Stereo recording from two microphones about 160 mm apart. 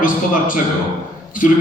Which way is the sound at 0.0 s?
55° left (ahead or behind).